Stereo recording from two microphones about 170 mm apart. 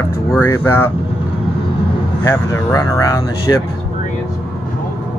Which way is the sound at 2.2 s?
15° left (ahead or behind).